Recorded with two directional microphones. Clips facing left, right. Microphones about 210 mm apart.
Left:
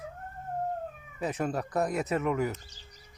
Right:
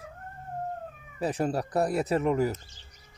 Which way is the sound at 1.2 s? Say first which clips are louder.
Right 3 dB; 35° right (ahead or behind).